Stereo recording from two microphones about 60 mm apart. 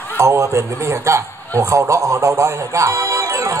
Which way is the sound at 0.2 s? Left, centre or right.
Right.